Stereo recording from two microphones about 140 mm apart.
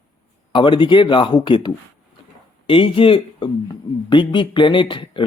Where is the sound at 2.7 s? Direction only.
40° left (ahead or behind).